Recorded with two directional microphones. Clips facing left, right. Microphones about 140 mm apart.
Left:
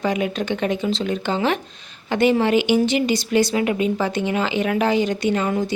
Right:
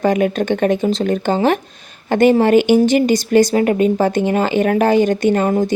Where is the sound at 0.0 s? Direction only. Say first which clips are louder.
Right 7 dB; 50° right (ahead or behind).